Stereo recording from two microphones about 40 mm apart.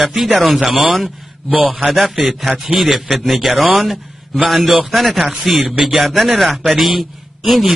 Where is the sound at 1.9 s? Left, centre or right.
Centre.